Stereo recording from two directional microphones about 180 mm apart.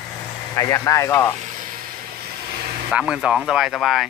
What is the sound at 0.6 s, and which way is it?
Speech, 20° left (ahead or behind).